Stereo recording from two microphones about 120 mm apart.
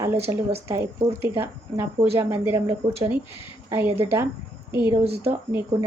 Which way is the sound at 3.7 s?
20° right (ahead or behind).